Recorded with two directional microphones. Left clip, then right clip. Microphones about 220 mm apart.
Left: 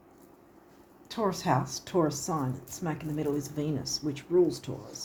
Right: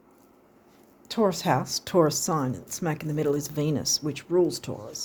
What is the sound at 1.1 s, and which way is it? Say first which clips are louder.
Speech: right 5 dB; 50° right (ahead or behind).